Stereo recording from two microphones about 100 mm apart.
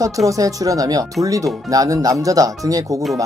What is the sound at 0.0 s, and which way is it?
Speech, 35° right (ahead or behind).